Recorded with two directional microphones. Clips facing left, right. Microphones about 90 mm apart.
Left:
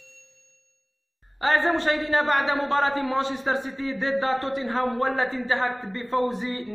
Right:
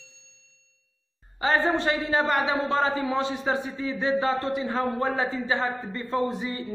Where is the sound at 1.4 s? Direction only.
45° left (ahead or behind).